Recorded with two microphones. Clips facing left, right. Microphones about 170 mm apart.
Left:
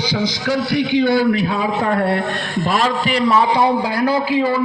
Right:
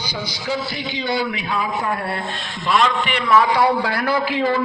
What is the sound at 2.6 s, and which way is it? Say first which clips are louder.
A man's voice: even; 40° left (ahead or behind).